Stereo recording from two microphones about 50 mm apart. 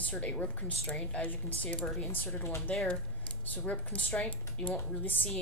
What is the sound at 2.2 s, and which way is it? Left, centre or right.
Speech, left.